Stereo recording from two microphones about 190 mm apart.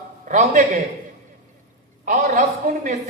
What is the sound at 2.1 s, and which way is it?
Speech, 45° right (ahead or behind).